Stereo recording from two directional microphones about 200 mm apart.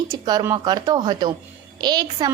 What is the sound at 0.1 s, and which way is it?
A woman's voice, 20° right (ahead or behind).